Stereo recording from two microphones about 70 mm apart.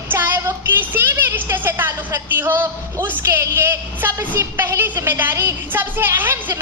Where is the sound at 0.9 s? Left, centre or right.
Right.